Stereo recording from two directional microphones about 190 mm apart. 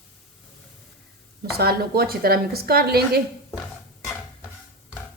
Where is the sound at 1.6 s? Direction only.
55° right (ahead or behind).